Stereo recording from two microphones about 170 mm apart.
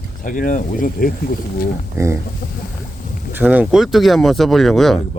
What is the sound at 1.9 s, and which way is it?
Speech, 15° right (ahead or behind).